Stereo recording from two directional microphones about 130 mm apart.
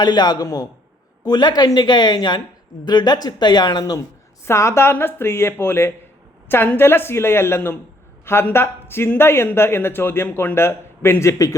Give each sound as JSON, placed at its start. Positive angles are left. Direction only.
{"t": 0.0, "sound": "a woman's voice", "side_deg": 35}